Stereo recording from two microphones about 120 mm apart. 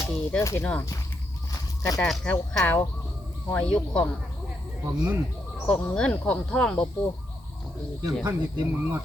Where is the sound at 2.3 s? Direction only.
15° left (ahead or behind).